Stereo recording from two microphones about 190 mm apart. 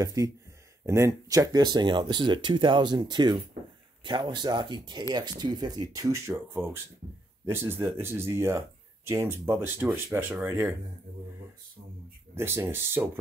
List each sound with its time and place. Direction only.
0.0 s speech: 20° right (ahead or behind)
12.4 s speech: 10° right (ahead or behind)